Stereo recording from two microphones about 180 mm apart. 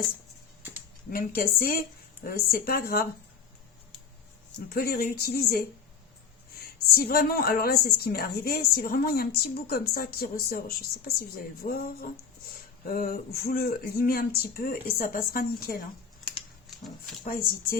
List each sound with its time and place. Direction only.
1.1 s a woman's voice: 55° left (ahead or behind)
4.7 s a woman's voice: 60° left (ahead or behind)
16.6 s speech: centre (ahead or behind)